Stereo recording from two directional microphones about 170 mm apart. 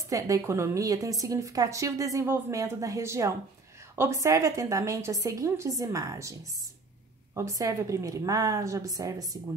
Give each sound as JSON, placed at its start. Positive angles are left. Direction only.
{"t": 0.1, "sound": "a woman's voice", "side_deg": -20}
{"t": 7.3, "sound": "a woman's voice", "side_deg": -20}